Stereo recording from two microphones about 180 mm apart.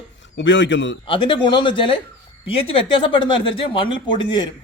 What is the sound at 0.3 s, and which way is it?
Speech, 90° left.